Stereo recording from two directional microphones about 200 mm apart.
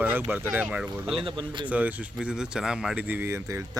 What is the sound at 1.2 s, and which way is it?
Speech, 25° right (ahead or behind).